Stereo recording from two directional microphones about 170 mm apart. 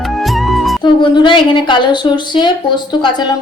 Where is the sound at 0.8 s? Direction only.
25° left (ahead or behind).